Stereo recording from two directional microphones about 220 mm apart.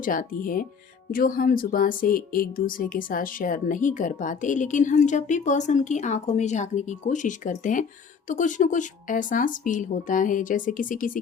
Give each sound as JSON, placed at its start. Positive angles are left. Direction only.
{"t": 0.0, "sound": "speech", "side_deg": 40}